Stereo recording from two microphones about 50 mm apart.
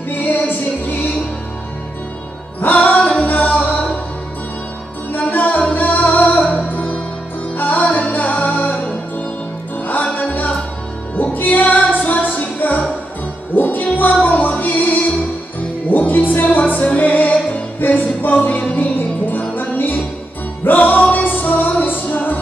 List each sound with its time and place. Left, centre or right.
0.1 s music: left
2.6 s music: left
5.1 s music: left
7.8 s music: left
11.3 s music: left